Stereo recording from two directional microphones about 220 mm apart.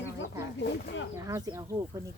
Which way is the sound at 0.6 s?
50° left (ahead or behind).